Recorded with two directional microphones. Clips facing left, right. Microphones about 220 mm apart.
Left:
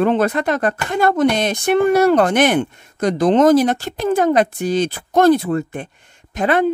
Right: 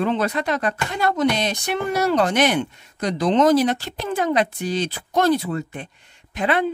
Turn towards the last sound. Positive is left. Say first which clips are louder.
# left 4 dB
turn(degrees=45)  # may be behind; listen again after turning